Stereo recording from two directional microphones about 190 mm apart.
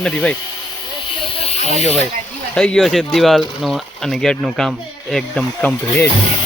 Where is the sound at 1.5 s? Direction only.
35° left (ahead or behind).